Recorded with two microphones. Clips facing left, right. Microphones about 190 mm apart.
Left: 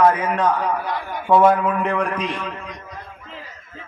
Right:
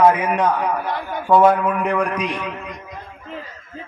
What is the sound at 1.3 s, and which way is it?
A man's voice, centre (ahead or behind).